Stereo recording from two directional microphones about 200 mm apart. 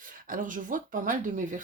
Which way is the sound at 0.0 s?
45° right (ahead or behind).